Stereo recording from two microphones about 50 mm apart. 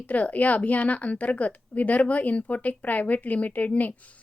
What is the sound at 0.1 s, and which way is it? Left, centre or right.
A woman's voice, left.